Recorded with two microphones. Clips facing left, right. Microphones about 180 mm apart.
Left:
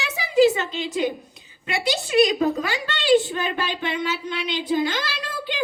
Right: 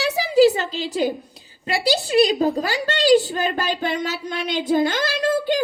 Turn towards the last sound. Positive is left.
turn(degrees=-45)  # may be behind; listen again after turning